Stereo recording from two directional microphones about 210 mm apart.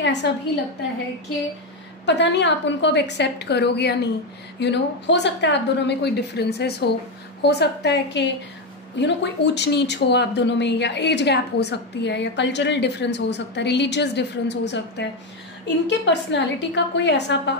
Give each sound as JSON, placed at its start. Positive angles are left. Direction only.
{"t": 0.0, "sound": "a woman's voice", "side_deg": 55}
{"t": 2.0, "sound": "a woman's voice", "side_deg": 55}